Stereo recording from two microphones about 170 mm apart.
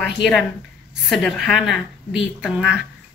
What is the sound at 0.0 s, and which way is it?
A woman's voice, centre (ahead or behind).